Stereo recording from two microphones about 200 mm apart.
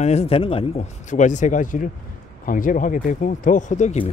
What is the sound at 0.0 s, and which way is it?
Speech, 30° left (ahead or behind).